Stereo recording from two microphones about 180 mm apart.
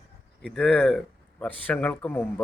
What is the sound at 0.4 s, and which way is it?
Speech, 5° left (ahead or behind).